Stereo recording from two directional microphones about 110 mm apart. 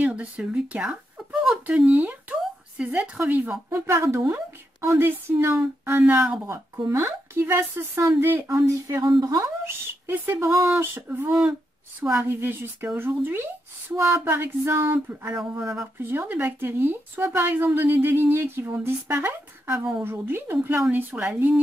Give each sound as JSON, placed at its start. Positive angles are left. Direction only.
{"t": 0.0, "sound": "speech", "side_deg": -10}
{"t": 1.9, "sound": "a woman's voice", "side_deg": -15}
{"t": 15.6, "sound": "speech", "side_deg": -5}
{"t": 16.0, "sound": "a woman's voice", "side_deg": -20}